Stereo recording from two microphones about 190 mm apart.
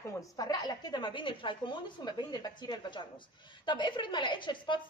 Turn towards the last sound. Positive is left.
turn(degrees=25)  # may be behind; listen again after turning